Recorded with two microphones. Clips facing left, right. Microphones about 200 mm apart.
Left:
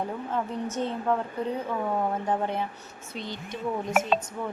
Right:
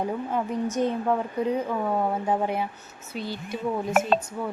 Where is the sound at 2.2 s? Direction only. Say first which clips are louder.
Right 2 dB; 10° right (ahead or behind).